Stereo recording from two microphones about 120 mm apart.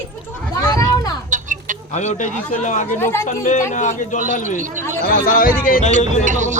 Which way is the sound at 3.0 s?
20° left (ahead or behind).